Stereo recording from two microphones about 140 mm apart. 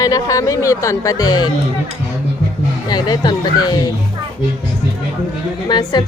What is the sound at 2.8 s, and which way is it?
Speech, 30° left (ahead or behind).